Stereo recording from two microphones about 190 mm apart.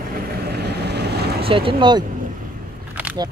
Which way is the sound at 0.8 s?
60° right (ahead or behind).